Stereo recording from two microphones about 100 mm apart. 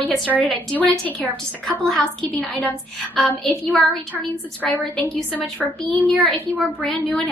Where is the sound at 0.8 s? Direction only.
10° left (ahead or behind).